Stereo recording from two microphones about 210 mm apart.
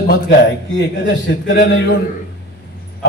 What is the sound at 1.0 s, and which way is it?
Speech, 60° left (ahead or behind).